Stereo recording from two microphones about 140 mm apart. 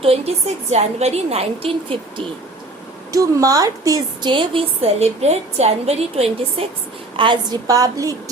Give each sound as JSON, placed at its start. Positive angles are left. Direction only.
{"t": 0.0, "sound": "a woman's voice", "side_deg": -45}
{"t": 3.1, "sound": "a woman's voice", "side_deg": -25}
{"t": 7.2, "sound": "a woman's voice", "side_deg": -30}